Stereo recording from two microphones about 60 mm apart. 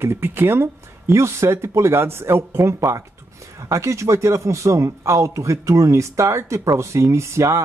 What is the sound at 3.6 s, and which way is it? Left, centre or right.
A man's voice, right.